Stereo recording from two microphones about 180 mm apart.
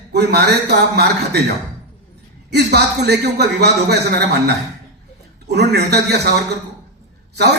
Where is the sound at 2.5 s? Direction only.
65° right (ahead or behind).